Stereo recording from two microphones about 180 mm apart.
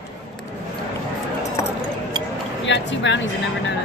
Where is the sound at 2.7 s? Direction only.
90° left.